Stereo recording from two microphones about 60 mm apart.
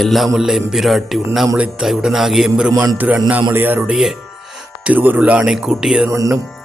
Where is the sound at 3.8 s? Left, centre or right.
Centre.